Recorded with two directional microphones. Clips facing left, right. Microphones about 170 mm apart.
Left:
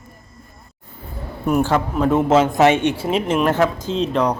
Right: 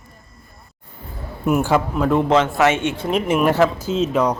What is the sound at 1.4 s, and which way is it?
Speech, 10° right (ahead or behind).